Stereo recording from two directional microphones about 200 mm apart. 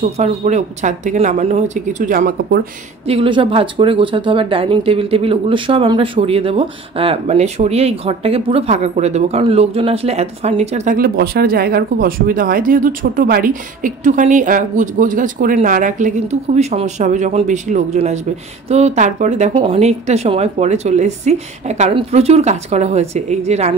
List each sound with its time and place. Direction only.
0.2 s speech: 35° right (ahead or behind)
3.1 s speech: 25° right (ahead or behind)
11.0 s speech: 50° right (ahead or behind); by 23.7 s 35° right (ahead or behind)